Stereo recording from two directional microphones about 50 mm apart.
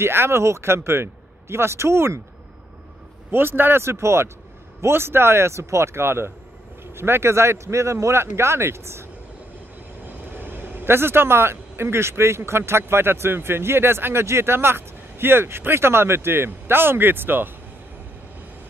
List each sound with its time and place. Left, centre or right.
0.0 s speech: right
3.3 s a man's voice: right
3.8 s speech: right
10.3 s a man's voice: right